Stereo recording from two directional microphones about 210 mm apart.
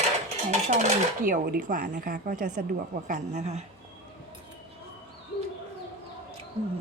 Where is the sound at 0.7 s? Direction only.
35° right (ahead or behind).